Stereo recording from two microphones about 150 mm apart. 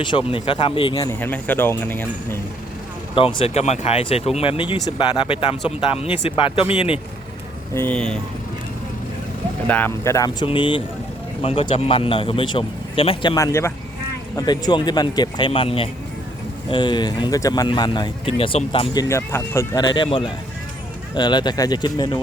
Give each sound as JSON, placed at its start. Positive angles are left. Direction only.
{"t": 0.3, "sound": "speech", "side_deg": 35}
{"t": 0.9, "sound": "speech", "side_deg": 20}
{"t": 3.2, "sound": "speech", "side_deg": 35}
{"t": 7.7, "sound": "speech", "side_deg": 10}
{"t": 9.6, "sound": "speech", "side_deg": 10}
{"t": 10.4, "sound": "speech", "side_deg": 35}
{"t": 13.3, "sound": "speech", "side_deg": 20}
{"t": 18.9, "sound": "speech", "side_deg": 20}